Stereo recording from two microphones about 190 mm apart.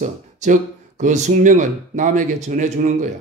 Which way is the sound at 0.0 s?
40° right (ahead or behind).